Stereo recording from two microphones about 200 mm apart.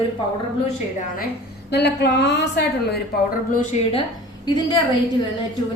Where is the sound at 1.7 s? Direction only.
55° left (ahead or behind).